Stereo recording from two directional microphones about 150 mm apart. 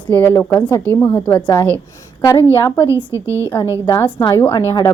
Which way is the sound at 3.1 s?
15° right (ahead or behind).